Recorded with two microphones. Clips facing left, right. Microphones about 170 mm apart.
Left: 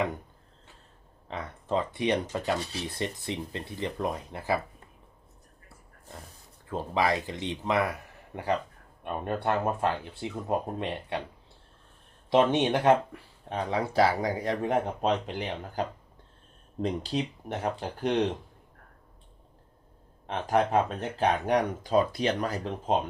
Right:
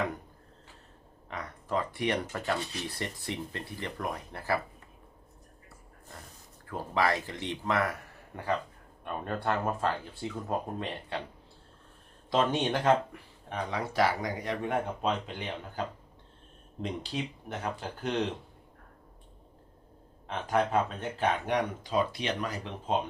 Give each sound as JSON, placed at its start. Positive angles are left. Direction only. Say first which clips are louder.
{"t": 1.3, "sound": "speech", "louder": "left 3 dB", "side_deg": 25}
{"t": 6.7, "sound": "speech", "louder": "left 2 dB", "side_deg": 20}
{"t": 9.0, "sound": "speech", "louder": "left 3 dB", "side_deg": 20}
{"t": 12.3, "sound": "speech", "louder": "left 5 dB", "side_deg": 25}
{"t": 13.5, "sound": "speech", "louder": "left 4 dB", "side_deg": 30}
{"t": 16.8, "sound": "speech", "louder": "left 5 dB", "side_deg": 35}
{"t": 20.3, "sound": "speech", "louder": "left 3 dB", "side_deg": 40}